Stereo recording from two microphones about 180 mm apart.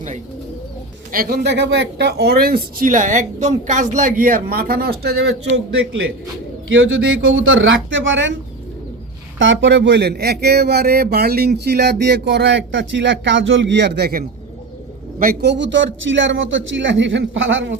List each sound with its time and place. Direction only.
1.1 s speech: 55° right (ahead or behind)
5.7 s a man's voice: 90° right
9.4 s a man's voice: 90° right